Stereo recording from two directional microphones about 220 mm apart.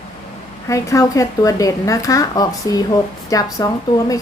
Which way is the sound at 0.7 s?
15° left (ahead or behind).